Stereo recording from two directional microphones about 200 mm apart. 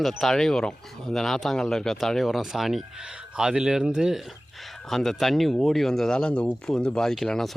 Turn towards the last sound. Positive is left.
turn(degrees=0)  # may be behind; listen again after turning